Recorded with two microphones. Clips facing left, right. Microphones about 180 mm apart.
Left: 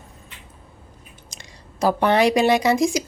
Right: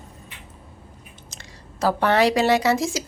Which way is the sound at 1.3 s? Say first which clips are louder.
Right 1 dB; 15° left (ahead or behind).